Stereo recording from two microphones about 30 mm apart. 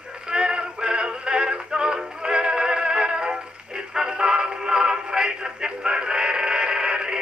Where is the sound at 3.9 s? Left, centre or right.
Right.